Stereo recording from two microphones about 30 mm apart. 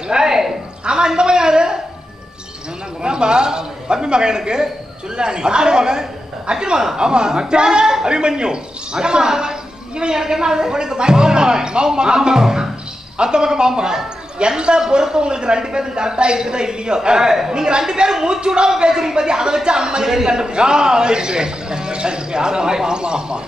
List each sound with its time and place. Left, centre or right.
0.1 s a man's voice: centre
3.0 s a man's voice: right